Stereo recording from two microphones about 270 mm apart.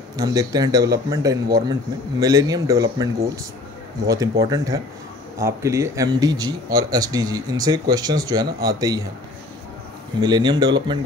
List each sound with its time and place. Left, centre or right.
0.2 s speech: centre
10.2 s speech: centre